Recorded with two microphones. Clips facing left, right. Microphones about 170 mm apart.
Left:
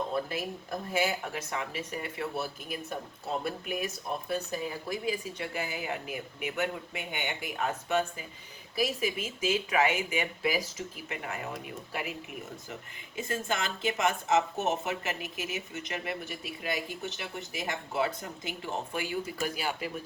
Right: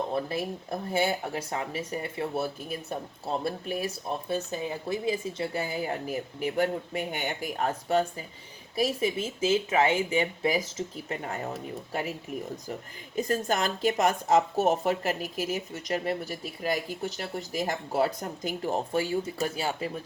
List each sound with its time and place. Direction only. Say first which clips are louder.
0.3 s speech: right 3 dB; 30° right (ahead or behind)
13.1 s speech: right 6 dB; 40° right (ahead or behind)